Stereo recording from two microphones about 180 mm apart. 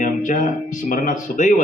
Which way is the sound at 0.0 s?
45° left (ahead or behind).